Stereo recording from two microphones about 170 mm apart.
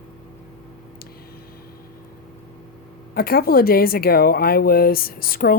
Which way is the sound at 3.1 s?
60° left (ahead or behind).